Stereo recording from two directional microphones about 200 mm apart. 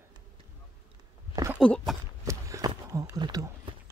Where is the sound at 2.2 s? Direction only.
15° right (ahead or behind).